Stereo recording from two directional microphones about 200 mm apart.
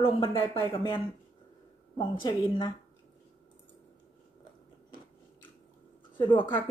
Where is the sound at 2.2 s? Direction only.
20° left (ahead or behind).